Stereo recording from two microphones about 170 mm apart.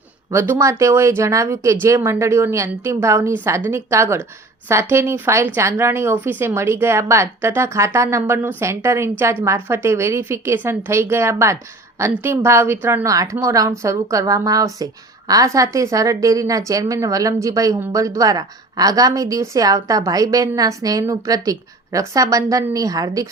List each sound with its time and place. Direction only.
0.3 s a woman's voice: 15° right (ahead or behind)